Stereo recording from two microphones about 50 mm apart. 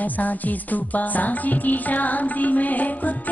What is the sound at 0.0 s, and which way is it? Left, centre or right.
Music, left.